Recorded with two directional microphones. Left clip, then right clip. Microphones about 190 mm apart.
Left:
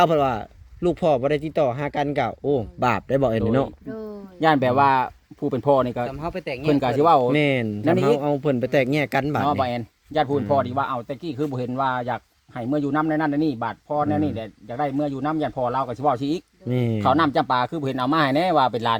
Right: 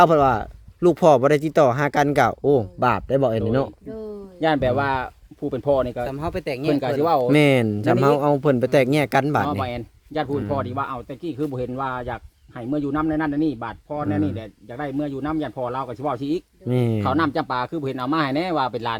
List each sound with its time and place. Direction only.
0.0 s speech: 15° right (ahead or behind)
2.8 s speech: 10° right (ahead or behind)
4.4 s speech: 55° left (ahead or behind)
6.1 s speech: 70° right (ahead or behind)
6.7 s speech: 55° left (ahead or behind)
7.3 s speech: 30° right (ahead or behind)
9.5 s speech: 55° left (ahead or behind)
16.6 s speech: 15° right (ahead or behind)
17.0 s speech: 55° left (ahead or behind)